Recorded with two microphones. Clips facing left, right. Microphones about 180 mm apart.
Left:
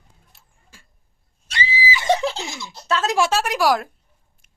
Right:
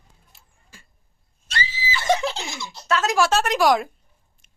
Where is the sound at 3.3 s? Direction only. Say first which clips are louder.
Right 1 dB; 10° left (ahead or behind).